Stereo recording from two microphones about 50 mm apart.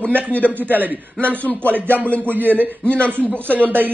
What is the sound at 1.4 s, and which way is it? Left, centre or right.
Speech, left.